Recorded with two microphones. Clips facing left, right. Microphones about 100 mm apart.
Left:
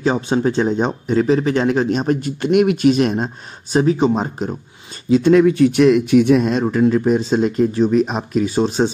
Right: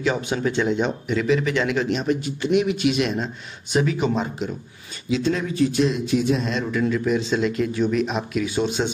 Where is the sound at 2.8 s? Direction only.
45° left (ahead or behind).